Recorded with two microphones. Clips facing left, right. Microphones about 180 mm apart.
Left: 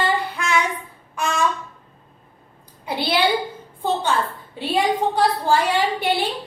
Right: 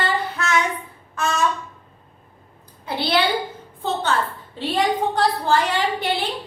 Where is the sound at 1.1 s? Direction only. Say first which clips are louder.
Right 1 dB; 15° left (ahead or behind).